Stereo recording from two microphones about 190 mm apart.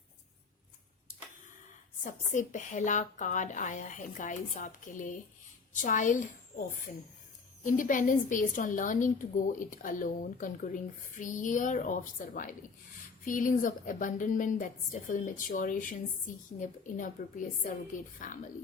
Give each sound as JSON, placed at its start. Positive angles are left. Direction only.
{"t": 2.0, "sound": "a woman's voice", "side_deg": 40}